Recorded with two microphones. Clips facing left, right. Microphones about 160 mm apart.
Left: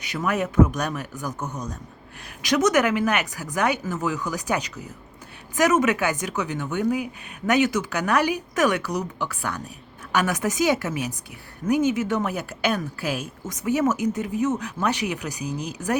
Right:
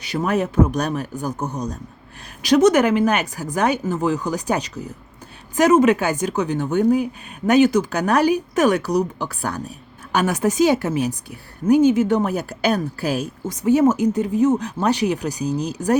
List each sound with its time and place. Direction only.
0.0 s speech: 30° right (ahead or behind)